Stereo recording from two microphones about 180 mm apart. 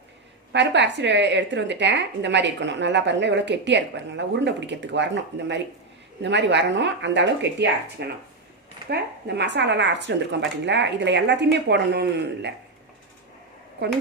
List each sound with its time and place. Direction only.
0.5 s a woman's voice: 75° right (ahead or behind)